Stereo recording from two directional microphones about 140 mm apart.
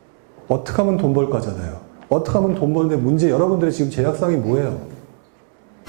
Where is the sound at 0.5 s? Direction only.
15° right (ahead or behind).